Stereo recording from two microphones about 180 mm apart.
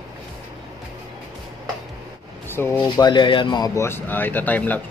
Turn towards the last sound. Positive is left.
turn(degrees=10)  # may be behind; listen again after turning